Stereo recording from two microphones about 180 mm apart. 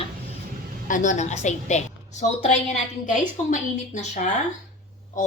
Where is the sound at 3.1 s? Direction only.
45° left (ahead or behind).